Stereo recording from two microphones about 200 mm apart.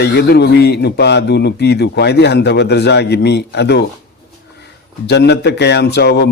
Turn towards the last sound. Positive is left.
turn(degrees=55)  # may be behind; listen again after turning